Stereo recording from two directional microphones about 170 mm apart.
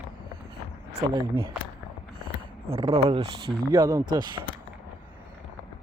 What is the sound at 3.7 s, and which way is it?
Speech, 20° right (ahead or behind).